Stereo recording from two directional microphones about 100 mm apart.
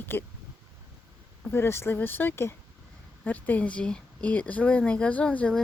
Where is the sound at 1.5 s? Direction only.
25° left (ahead or behind).